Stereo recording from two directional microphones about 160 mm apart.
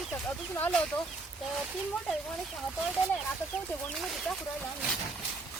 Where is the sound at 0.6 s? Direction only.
5° left (ahead or behind).